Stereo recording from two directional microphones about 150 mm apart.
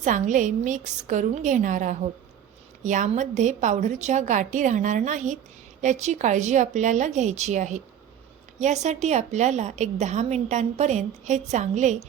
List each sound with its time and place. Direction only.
0.0 s a woman's voice: 55° right (ahead or behind)